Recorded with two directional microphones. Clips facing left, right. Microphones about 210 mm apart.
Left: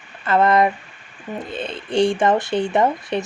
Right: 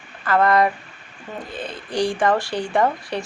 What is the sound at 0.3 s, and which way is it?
Speech, 20° left (ahead or behind).